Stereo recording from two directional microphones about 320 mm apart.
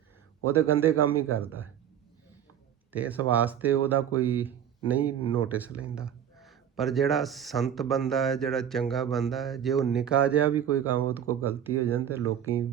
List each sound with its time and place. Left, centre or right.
0.4 s a man's voice: centre
2.9 s speech: centre
5.2 s speech: centre
5.5 s a man's voice: centre